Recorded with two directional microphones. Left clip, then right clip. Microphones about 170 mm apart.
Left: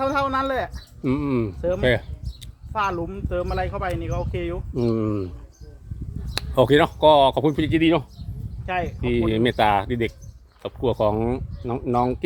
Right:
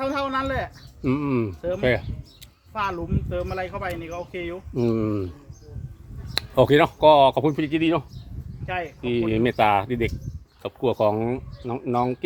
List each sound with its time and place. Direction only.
0.0 s speech: 35° left (ahead or behind)
1.0 s speech: centre (ahead or behind)
2.7 s speech: 30° left (ahead or behind)
4.7 s speech: centre (ahead or behind)
6.3 s speech: centre (ahead or behind)
7.5 s speech: 20° left (ahead or behind)
8.6 s speech: 35° left (ahead or behind)
9.0 s speech: 20° left (ahead or behind); by 11.2 s centre (ahead or behind)
11.2 s speech: 15° left (ahead or behind)